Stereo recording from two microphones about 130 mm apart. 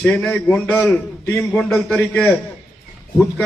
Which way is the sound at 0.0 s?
10° left (ahead or behind).